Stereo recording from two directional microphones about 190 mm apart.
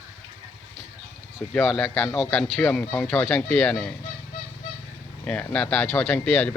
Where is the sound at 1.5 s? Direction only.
Centre (ahead or behind).